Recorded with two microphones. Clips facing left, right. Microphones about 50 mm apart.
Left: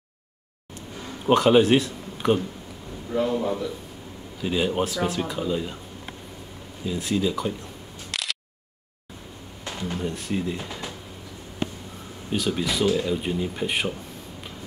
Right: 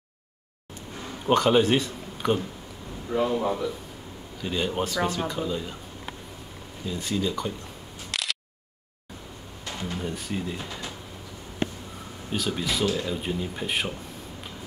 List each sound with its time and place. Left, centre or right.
1.2 s a man's voice: centre
4.4 s speech: centre
6.9 s speech: centre
8.1 s single-lens reflex camera: centre
9.7 s a sound: centre
9.9 s speech: centre
12.3 s speech: centre